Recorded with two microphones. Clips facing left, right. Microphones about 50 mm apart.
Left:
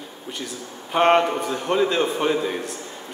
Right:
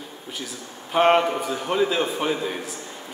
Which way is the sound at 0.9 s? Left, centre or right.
Centre.